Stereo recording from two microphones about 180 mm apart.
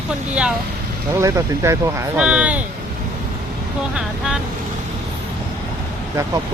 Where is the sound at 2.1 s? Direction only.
5° right (ahead or behind).